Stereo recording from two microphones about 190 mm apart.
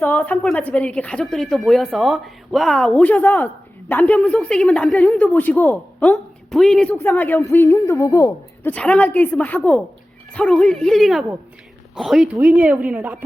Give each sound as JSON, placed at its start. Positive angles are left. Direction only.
{"t": 0.0, "sound": "a woman's voice", "side_deg": 10}